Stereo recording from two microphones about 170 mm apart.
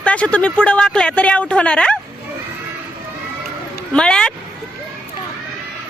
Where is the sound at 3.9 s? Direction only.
5° left (ahead or behind).